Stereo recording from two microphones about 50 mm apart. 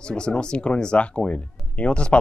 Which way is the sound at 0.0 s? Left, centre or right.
Centre.